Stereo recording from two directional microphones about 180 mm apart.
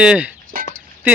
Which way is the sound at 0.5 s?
50° right (ahead or behind).